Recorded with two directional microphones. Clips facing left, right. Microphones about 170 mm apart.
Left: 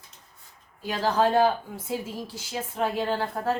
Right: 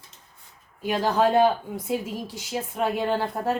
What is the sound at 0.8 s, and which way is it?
Speech, 15° right (ahead or behind).